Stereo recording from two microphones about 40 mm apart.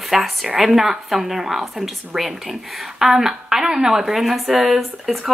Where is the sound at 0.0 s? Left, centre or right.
Centre.